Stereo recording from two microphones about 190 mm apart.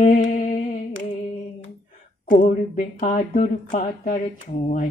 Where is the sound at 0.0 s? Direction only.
40° left (ahead or behind).